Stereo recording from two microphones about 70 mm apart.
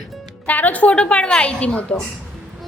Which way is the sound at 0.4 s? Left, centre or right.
Left.